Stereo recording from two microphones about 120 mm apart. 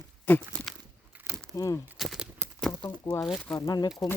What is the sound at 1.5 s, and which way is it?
Speech, 30° left (ahead or behind).